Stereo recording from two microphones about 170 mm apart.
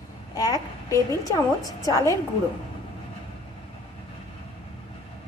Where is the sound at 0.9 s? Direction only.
20° left (ahead or behind).